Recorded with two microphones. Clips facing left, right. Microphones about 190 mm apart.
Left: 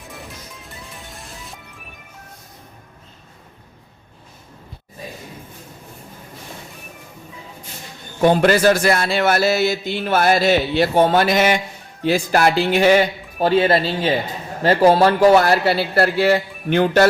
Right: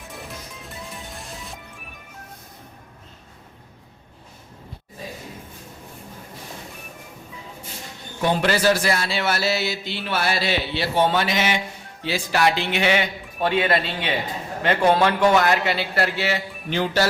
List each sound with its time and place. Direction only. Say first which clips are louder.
0.6 s music: right 2 dB; centre (ahead or behind)
8.2 s a man's voice: left 6 dB; 50° left (ahead or behind)